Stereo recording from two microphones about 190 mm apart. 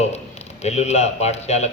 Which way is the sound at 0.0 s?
35° left (ahead or behind).